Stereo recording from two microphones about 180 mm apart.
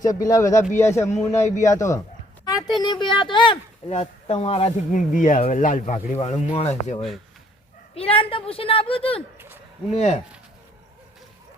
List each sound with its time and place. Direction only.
0.0 s a man's voice: 20° left (ahead or behind); by 6.9 s 35° left (ahead or behind)
7.9 s speech: 30° left (ahead or behind)
9.4 s a sound: 10° right (ahead or behind)
9.9 s speech: 35° left (ahead or behind)